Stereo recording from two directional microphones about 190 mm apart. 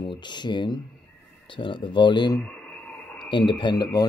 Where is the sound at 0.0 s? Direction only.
25° left (ahead or behind).